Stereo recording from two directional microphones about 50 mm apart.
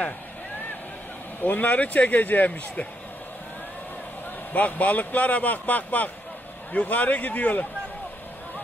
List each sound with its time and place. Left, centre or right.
1.4 s a man's voice: left
4.5 s a man's voice: left